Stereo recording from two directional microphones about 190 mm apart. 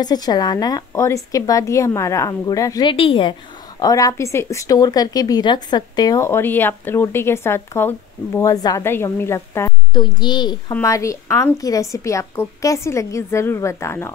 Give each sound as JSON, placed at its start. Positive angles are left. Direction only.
{"t": 0.0, "sound": "a woman's voice", "side_deg": 20}